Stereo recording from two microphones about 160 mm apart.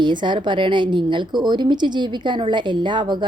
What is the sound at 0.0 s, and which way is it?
A woman's voice, 30° right (ahead or behind).